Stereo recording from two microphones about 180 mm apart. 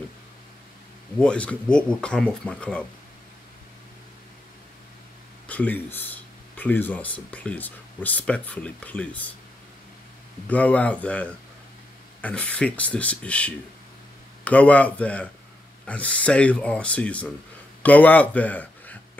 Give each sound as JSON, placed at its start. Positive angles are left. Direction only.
{"t": 1.2, "sound": "speech", "side_deg": 5}
{"t": 5.5, "sound": "speech", "side_deg": 10}
{"t": 10.5, "sound": "speech", "side_deg": 10}